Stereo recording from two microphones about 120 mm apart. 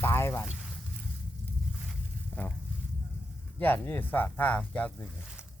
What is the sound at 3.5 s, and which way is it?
Speech, 15° left (ahead or behind).